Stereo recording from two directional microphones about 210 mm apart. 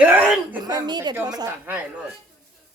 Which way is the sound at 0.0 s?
5° right (ahead or behind).